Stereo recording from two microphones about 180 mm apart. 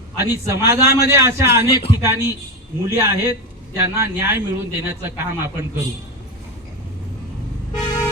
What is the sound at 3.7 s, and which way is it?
A man's voice, 15° right (ahead or behind).